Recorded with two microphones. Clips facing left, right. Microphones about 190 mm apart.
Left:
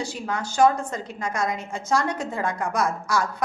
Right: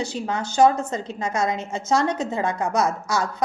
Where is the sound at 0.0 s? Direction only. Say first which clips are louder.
Right 3 dB; 20° right (ahead or behind).